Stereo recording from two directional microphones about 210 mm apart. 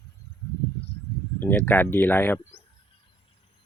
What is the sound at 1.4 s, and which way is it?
Speech, 10° left (ahead or behind).